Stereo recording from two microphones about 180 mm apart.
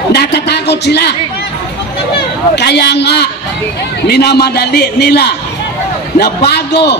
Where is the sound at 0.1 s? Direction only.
65° left (ahead or behind).